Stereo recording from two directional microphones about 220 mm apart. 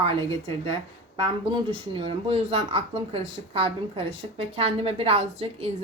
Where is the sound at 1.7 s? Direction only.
25° right (ahead or behind).